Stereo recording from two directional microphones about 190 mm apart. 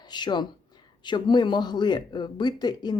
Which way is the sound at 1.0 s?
25° left (ahead or behind).